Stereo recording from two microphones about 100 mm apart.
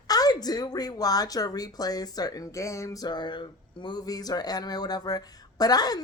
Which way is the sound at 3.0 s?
50° left (ahead or behind).